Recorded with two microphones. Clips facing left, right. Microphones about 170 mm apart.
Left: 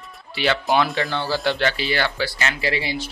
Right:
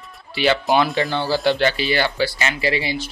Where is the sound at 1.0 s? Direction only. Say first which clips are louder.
Right 3 dB; 20° right (ahead or behind).